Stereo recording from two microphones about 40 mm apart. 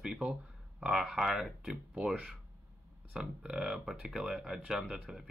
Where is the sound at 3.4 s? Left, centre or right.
Centre.